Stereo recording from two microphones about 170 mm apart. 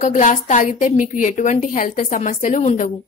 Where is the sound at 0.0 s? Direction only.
45° left (ahead or behind).